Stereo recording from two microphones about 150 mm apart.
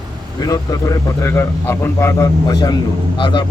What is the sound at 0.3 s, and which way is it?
A man's voice, 25° left (ahead or behind).